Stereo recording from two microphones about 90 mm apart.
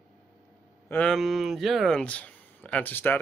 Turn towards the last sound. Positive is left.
turn(degrees=25)  # may be behind; listen again after turning